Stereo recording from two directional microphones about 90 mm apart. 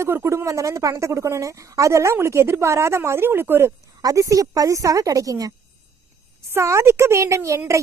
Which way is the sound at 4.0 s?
40° right (ahead or behind).